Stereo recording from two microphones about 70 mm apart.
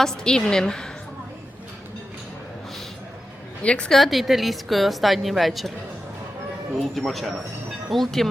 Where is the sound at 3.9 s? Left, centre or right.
Centre.